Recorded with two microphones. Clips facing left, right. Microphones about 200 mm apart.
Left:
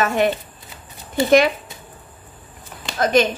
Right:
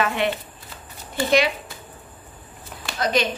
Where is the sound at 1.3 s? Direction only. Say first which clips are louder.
Left 5 dB; 50° left (ahead or behind).